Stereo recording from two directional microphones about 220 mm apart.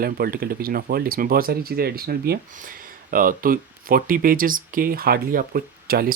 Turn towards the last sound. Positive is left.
turn(degrees=-40)  # may be behind; listen again after turning